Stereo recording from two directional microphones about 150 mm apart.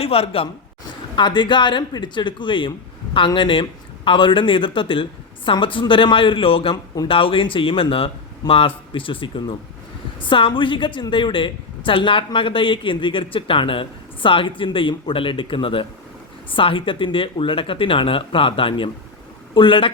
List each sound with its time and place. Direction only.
0.0 s a woman's voice: 40° left (ahead or behind)